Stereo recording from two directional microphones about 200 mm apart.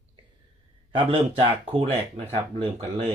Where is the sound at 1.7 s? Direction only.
30° right (ahead or behind).